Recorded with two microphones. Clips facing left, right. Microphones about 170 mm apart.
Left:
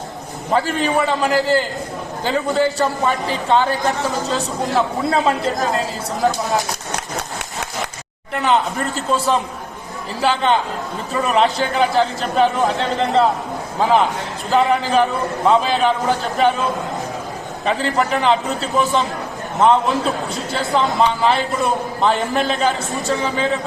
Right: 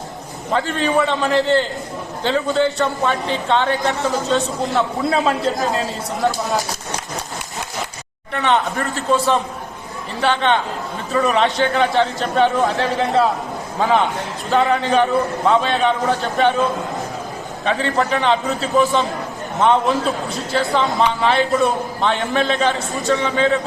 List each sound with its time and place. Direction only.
0.5 s a man's voice: 5° left (ahead or behind)
8.3 s a man's voice: centre (ahead or behind)
17.7 s a man's voice: centre (ahead or behind)